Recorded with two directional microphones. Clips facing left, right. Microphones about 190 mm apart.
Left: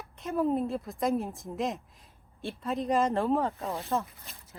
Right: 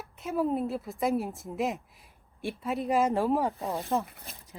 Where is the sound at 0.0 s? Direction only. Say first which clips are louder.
Even; 5° right (ahead or behind).